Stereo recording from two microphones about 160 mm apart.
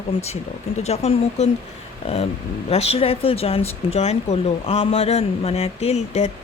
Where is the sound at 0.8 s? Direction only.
40° left (ahead or behind).